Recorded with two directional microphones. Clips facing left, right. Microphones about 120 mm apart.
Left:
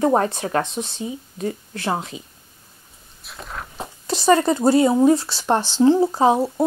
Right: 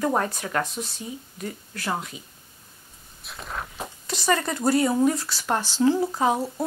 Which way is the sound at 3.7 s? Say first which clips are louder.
Left 6 dB; 30° left (ahead or behind).